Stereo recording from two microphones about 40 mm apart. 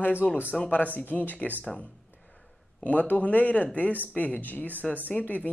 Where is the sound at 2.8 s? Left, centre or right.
Left.